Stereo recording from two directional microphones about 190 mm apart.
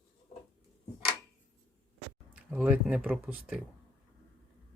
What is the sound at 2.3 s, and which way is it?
Speech, 5° right (ahead or behind).